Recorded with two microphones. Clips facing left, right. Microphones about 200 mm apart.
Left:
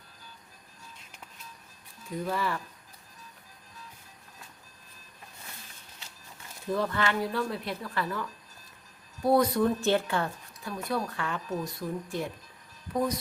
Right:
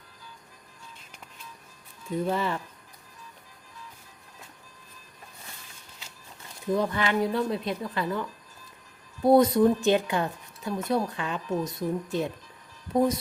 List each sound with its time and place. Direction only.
2.1 s speech: 25° right (ahead or behind)
6.7 s speech: 15° right (ahead or behind)